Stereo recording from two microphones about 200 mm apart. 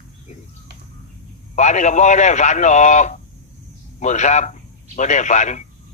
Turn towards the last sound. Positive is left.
turn(degrees=35)  # may be behind; listen again after turning